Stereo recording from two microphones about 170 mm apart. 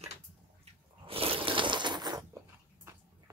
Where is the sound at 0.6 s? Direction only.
35° right (ahead or behind).